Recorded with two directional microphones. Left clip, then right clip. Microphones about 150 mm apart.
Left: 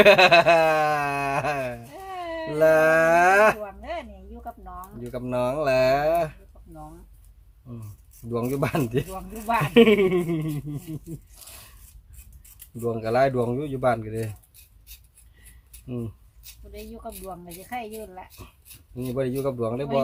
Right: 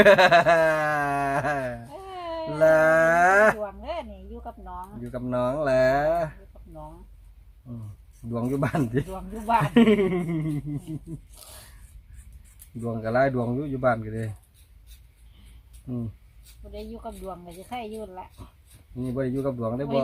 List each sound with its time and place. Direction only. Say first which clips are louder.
0.0 s a sound: left 1 dB; 20° left (ahead or behind)
2.0 s baby cry: left 1 dB; 30° right (ahead or behind)
2.5 s speech: even; 20° left (ahead or behind)
3.6 s a sound: right 1 dB; 30° right (ahead or behind)
5.0 s speech: left 1 dB; 20° left (ahead or behind)
8.3 s speech: left 2 dB; 25° left (ahead or behind)
9.0 s speech: right 1 dB; 25° right (ahead or behind)
9.7 s speech: left 4 dB; 20° left (ahead or behind)
12.8 s speech: left 2 dB; 25° left (ahead or behind)
17.0 s speech: even; 30° right (ahead or behind)
18.9 s speech: left 2 dB; 30° left (ahead or behind)